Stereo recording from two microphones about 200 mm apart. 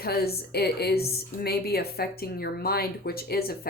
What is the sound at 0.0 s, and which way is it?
A woman's voice, 50° left (ahead or behind).